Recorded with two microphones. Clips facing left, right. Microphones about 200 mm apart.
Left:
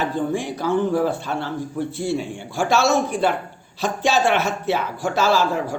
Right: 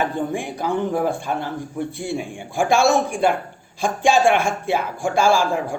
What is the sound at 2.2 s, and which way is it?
Speech, 50° right (ahead or behind).